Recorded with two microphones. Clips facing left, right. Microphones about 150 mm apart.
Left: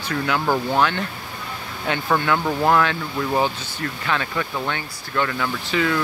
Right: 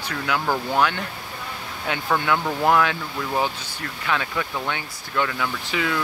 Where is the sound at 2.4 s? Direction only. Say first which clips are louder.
Left 2 dB; 5° left (ahead or behind).